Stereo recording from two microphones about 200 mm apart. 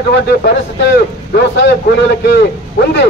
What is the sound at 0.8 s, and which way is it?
A man's voice, 60° left (ahead or behind).